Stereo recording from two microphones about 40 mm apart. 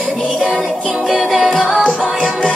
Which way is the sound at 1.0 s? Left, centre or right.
Centre.